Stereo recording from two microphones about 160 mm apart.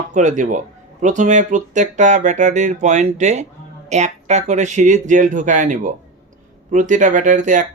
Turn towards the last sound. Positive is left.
turn(degrees=-55)  # may be behind; listen again after turning